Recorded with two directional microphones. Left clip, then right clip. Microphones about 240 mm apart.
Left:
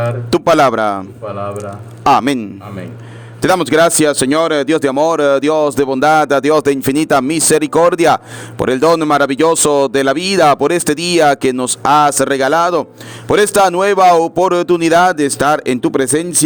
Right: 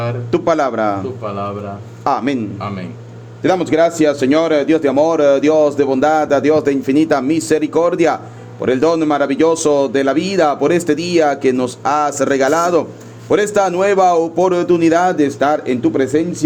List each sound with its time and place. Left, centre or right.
0.3 s speech: left
2.0 s speech: left
3.4 s speech: left